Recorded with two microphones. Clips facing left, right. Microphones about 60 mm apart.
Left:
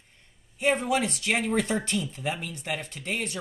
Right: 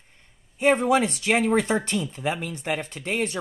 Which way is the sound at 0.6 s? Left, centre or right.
Right.